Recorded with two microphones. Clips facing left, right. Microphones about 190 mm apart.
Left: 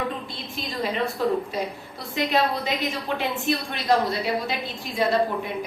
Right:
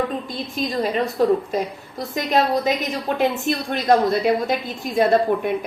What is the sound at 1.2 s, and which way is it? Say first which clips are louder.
Speech: right 7 dB; 45° right (ahead or behind).